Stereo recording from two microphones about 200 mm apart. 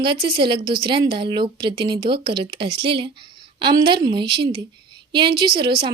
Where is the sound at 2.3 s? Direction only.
25° right (ahead or behind).